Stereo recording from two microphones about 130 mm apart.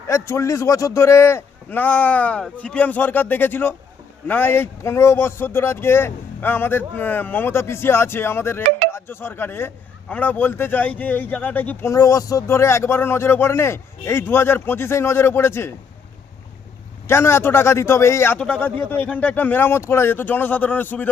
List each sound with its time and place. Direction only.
0.1 s speech: 25° left (ahead or behind)
11.9 s speech: 25° left (ahead or behind)
17.1 s speech: 20° left (ahead or behind)